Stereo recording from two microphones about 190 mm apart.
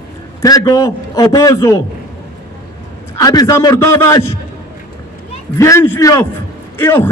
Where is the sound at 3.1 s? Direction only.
20° left (ahead or behind).